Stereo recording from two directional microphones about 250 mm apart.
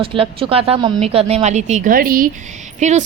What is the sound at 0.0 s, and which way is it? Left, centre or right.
A woman's voice, right.